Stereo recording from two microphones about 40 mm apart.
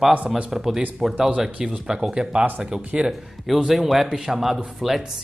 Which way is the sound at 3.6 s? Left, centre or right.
Centre.